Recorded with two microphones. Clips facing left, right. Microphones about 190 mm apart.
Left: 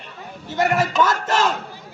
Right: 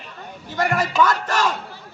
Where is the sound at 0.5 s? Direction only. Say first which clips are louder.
Left 1 dB; 25° left (ahead or behind).